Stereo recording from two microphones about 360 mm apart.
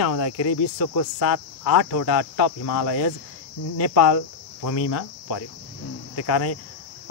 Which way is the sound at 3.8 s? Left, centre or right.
Left.